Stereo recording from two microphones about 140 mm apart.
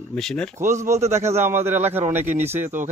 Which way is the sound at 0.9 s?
55° right (ahead or behind).